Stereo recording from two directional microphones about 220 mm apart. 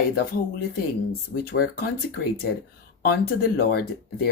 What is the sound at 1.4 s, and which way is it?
Speech, 45° left (ahead or behind).